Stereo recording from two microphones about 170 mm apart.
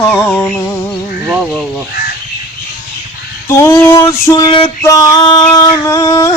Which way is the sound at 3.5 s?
15° left (ahead or behind).